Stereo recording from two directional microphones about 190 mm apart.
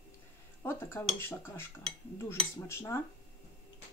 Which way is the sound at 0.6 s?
10° left (ahead or behind).